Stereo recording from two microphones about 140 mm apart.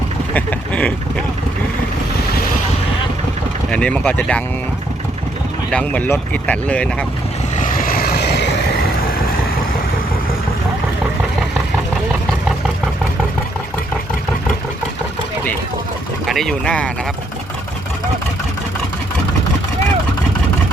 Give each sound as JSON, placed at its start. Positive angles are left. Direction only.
{"t": 0.3, "sound": "speech", "side_deg": 10}
{"t": 3.7, "sound": "speech", "side_deg": 10}
{"t": 5.7, "sound": "speech", "side_deg": 10}
{"t": 7.5, "sound": "vehicle", "side_deg": 70}
{"t": 16.2, "sound": "speech", "side_deg": 0}